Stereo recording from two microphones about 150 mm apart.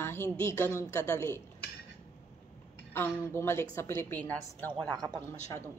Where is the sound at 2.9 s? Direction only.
15° left (ahead or behind).